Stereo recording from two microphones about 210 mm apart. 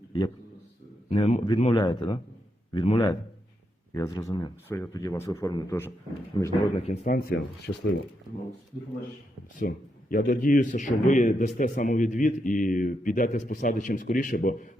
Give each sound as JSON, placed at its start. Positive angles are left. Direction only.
{"t": 1.1, "sound": "speech", "side_deg": 25}
{"t": 3.9, "sound": "speech", "side_deg": 15}
{"t": 7.7, "sound": "speech", "side_deg": 90}
{"t": 9.6, "sound": "speech", "side_deg": 40}